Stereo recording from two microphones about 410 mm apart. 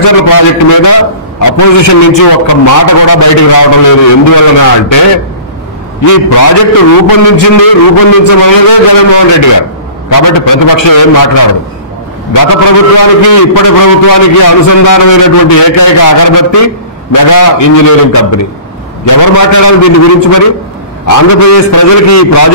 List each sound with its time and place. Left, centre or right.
0.3 s a man's voice: left
6.0 s a man's voice: left